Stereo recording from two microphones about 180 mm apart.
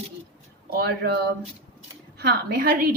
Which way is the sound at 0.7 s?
60° right (ahead or behind).